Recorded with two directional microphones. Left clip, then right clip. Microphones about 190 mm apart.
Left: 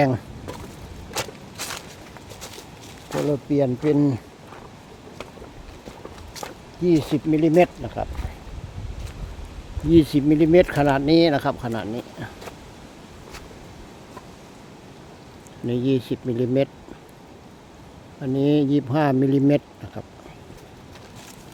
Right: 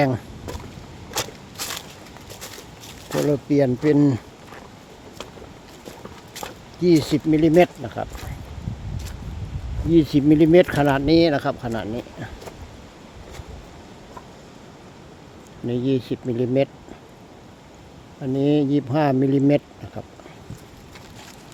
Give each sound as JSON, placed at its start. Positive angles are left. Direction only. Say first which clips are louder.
{"t": 1.1, "sound": "biting", "louder": "right 1 dB", "side_deg": -15}
{"t": 3.1, "sound": "speech", "louder": "right 2 dB", "side_deg": -20}
{"t": 3.5, "sound": "speech", "louder": "right 2 dB", "side_deg": -10}
{"t": 6.3, "sound": "speech", "louder": "right 1 dB", "side_deg": -15}
{"t": 9.9, "sound": "speech", "louder": "even", "side_deg": -5}
{"t": 15.6, "sound": "speech", "louder": "even", "side_deg": 5}
{"t": 18.2, "sound": "speech", "louder": "even", "side_deg": 0}